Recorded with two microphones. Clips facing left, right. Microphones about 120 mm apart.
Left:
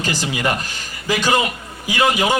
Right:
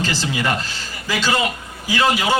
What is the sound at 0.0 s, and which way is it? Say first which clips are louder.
A man's voice: left 1 dB; 15° left (ahead or behind).